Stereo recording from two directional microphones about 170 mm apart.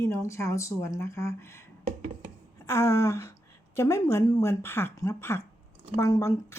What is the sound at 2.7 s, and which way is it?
Speech, 15° left (ahead or behind).